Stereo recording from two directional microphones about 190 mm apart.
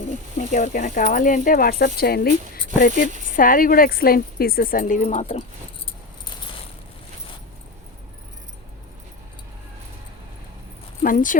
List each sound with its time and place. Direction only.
0.3 s a woman's voice: 40° left (ahead or behind)
11.0 s a woman's voice: 45° left (ahead or behind)